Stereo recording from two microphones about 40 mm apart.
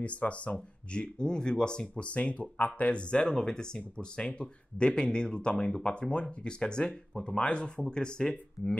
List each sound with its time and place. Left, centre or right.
0.0 s speech: left